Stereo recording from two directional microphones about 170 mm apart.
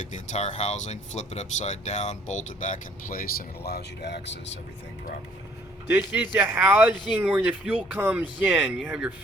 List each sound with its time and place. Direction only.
0.0 s speech: 45° left (ahead or behind); by 4.4 s 85° left
5.9 s speech: 10° right (ahead or behind)